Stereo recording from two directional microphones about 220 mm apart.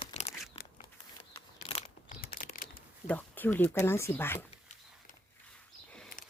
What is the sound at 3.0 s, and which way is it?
Speech, 5° left (ahead or behind).